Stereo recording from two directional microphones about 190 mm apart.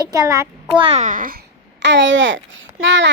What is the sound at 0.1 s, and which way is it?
Speech, 15° right (ahead or behind).